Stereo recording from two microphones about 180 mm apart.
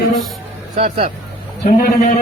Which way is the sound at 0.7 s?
40° right (ahead or behind).